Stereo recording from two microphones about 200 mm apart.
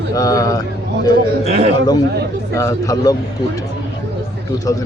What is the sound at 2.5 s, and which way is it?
Speech, 15° left (ahead or behind).